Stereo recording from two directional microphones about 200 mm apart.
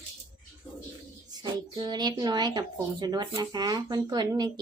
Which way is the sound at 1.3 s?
20° right (ahead or behind).